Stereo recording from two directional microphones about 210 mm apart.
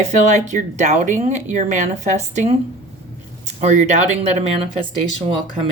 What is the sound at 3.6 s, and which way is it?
Speech, 35° right (ahead or behind).